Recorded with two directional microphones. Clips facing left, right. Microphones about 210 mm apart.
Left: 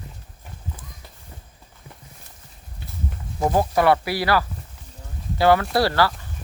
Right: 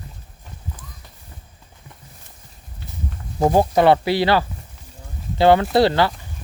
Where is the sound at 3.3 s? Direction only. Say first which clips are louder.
Right 4 dB; 30° right (ahead or behind).